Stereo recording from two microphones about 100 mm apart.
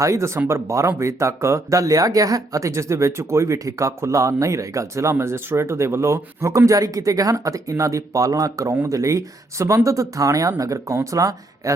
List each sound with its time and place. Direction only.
0.0 s speech: 30° right (ahead or behind)